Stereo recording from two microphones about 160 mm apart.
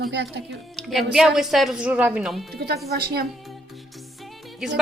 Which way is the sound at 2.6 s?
75° right (ahead or behind).